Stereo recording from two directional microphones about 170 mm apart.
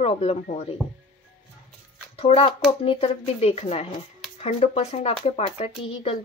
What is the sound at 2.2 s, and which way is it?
A woman's voice, 35° left (ahead or behind).